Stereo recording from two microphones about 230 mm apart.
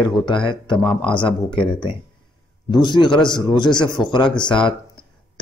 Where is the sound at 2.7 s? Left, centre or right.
Centre.